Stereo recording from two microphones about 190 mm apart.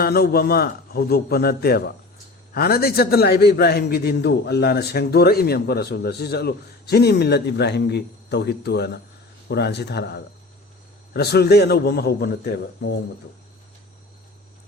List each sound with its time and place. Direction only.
0.0 s a man's voice: 55° left (ahead or behind)